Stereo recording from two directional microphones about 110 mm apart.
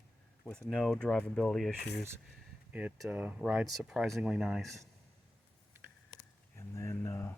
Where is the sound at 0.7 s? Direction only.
5° left (ahead or behind).